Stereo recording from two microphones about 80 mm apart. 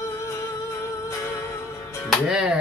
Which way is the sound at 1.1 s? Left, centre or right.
Left.